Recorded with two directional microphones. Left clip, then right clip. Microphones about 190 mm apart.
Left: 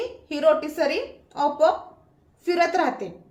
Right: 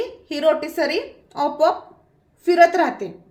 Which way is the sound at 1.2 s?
45° right (ahead or behind).